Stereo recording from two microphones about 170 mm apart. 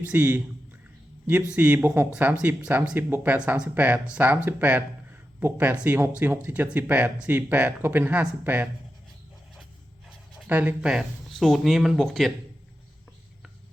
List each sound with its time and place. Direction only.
0.0 s speech: 10° right (ahead or behind)
1.5 s speech: 10° right (ahead or behind)
10.4 s speech: 10° right (ahead or behind)